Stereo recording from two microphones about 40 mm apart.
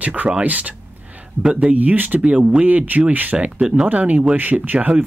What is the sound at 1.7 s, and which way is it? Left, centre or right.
Speech, right.